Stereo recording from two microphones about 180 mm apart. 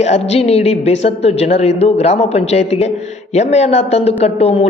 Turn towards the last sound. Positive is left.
turn(degrees=35)  # may be behind; listen again after turning